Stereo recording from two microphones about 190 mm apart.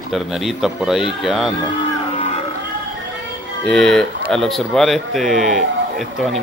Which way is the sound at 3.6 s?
5° left (ahead or behind).